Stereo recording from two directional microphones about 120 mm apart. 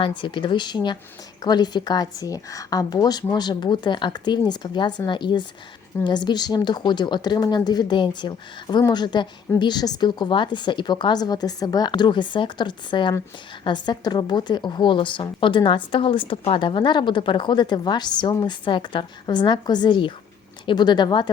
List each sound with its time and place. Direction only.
0.0 s a woman's voice: 40° left (ahead or behind)